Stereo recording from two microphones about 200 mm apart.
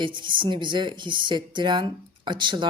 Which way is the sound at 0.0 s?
25° right (ahead or behind).